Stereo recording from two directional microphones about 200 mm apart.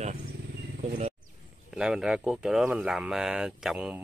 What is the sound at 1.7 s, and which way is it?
Speech, 5° right (ahead or behind).